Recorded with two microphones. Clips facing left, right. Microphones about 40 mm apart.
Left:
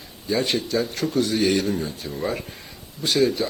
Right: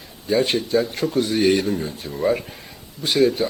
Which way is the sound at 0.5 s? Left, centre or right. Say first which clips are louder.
Right 3 dB; centre.